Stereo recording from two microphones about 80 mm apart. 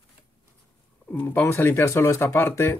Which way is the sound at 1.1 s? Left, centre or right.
Left.